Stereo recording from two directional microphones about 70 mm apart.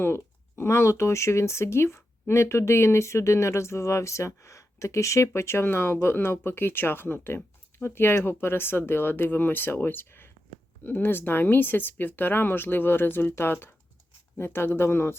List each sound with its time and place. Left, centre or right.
0.0 s speech: left